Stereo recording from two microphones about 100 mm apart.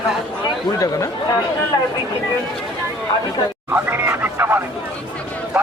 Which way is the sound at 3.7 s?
20° right (ahead or behind).